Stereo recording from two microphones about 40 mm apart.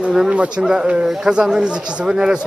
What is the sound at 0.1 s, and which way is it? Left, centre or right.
Speech, centre.